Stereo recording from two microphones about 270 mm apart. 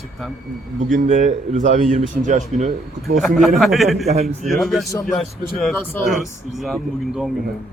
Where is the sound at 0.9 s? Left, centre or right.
Right.